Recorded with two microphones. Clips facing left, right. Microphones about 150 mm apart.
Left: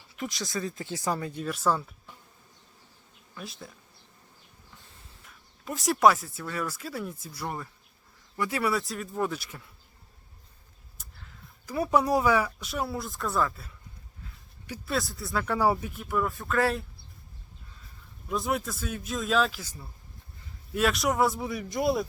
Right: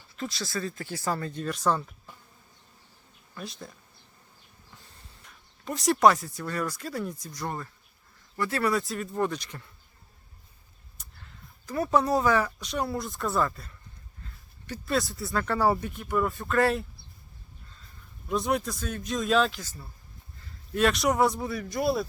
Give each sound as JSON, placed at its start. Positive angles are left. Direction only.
{"t": 0.2, "sound": "speech", "side_deg": 15}
{"t": 3.3, "sound": "a man's voice", "side_deg": 5}
{"t": 10.9, "sound": "speech", "side_deg": 0}
{"t": 14.7, "sound": "a man's voice", "side_deg": 0}
{"t": 15.4, "sound": "a man's voice", "side_deg": 10}
{"t": 18.3, "sound": "a man's voice", "side_deg": 0}
{"t": 21.5, "sound": "speech", "side_deg": 20}